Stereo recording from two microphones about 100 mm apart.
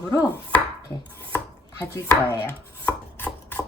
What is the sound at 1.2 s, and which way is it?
Chopping, 25° left (ahead or behind).